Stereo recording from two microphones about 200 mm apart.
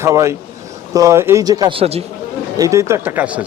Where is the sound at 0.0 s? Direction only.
15° right (ahead or behind); by 2.0 s 30° right (ahead or behind).